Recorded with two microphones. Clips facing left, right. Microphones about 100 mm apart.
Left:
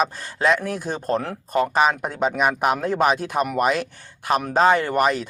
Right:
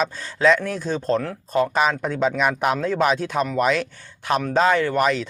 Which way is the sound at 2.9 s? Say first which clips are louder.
Even; 50° left (ahead or behind).